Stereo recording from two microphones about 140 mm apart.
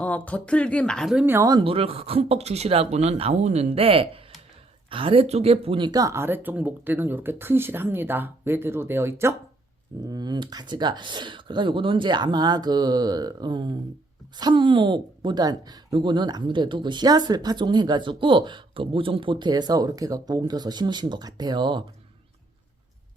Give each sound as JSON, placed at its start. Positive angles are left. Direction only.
{"t": 0.0, "sound": "speech", "side_deg": 10}
{"t": 1.1, "sound": "speech", "side_deg": -15}
{"t": 1.5, "sound": "speech", "side_deg": -30}
{"t": 1.7, "sound": "speech", "side_deg": -40}
{"t": 10.1, "sound": "speech", "side_deg": -30}